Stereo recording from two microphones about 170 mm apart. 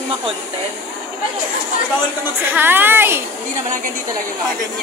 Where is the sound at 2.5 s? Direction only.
10° right (ahead or behind).